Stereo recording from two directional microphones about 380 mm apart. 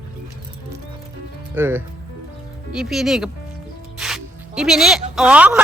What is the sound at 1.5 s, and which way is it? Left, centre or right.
Speech, centre.